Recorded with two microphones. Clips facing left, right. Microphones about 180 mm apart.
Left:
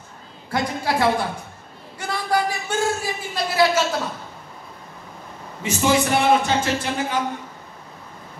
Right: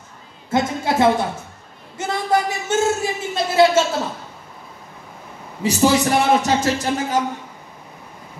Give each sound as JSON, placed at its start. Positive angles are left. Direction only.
{"t": 0.5, "sound": "a woman's voice", "side_deg": -20}
{"t": 2.0, "sound": "a sound", "side_deg": -20}
{"t": 5.6, "sound": "speech", "side_deg": -35}